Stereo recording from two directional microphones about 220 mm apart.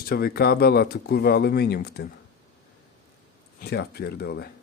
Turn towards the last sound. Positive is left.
turn(degrees=45)  # may be behind; listen again after turning